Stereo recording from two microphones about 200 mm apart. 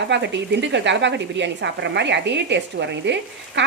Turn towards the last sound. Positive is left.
turn(degrees=-60)  # may be behind; listen again after turning